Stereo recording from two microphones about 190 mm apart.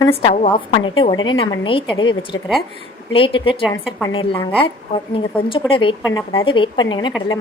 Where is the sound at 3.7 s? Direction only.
15° left (ahead or behind).